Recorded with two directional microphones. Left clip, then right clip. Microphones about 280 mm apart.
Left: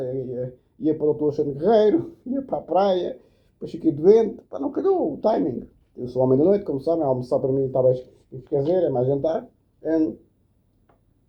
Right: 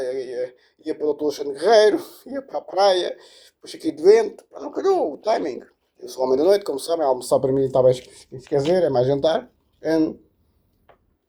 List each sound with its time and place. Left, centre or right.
0.0 s speech: right
8.4 s speech: right